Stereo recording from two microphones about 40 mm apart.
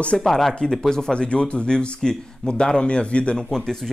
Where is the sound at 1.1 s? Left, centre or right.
Left.